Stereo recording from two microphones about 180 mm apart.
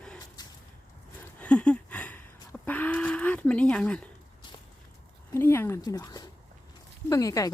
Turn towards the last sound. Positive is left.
turn(degrees=20)  # may be behind; listen again after turning